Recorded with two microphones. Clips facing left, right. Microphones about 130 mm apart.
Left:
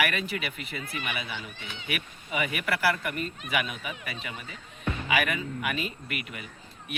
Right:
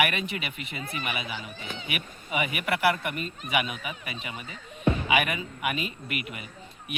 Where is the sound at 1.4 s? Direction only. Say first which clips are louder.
Right 3 dB; 40° right (ahead or behind).